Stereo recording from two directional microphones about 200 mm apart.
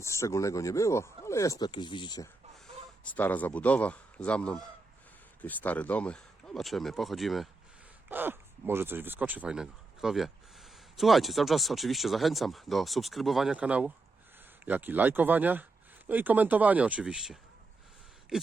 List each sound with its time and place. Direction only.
0.0 s speech: 15° left (ahead or behind)
3.0 s speech: 10° left (ahead or behind)
8.1 s speech: 10° right (ahead or behind)